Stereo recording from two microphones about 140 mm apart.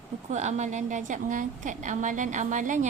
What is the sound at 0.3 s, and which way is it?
A woman's voice, 55° right (ahead or behind).